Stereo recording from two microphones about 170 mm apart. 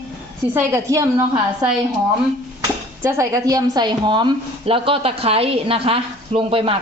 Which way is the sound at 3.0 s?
15° right (ahead or behind).